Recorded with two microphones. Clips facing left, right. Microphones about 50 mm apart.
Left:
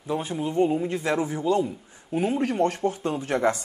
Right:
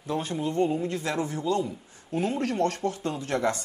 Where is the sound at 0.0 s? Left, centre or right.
Centre.